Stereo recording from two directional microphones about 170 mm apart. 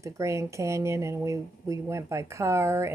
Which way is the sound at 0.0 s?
15° right (ahead or behind).